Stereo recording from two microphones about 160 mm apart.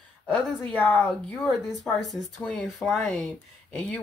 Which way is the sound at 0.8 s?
10° left (ahead or behind).